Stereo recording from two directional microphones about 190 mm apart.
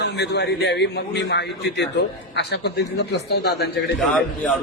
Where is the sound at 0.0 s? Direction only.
60° left (ahead or behind).